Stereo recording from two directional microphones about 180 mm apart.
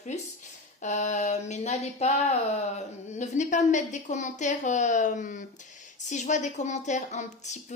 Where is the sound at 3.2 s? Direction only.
40° left (ahead or behind).